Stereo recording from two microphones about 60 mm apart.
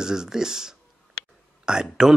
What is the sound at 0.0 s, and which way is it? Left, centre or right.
Speech, centre.